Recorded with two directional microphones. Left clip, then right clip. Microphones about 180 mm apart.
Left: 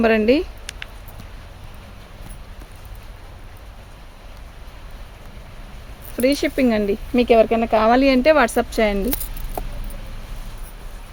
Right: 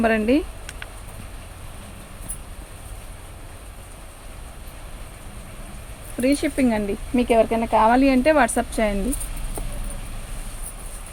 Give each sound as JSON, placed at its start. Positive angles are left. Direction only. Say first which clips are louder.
{"t": 0.0, "sound": "speech", "louder": "left 3 dB", "side_deg": 65}
{"t": 6.1, "sound": "speech", "louder": "left 3 dB", "side_deg": 65}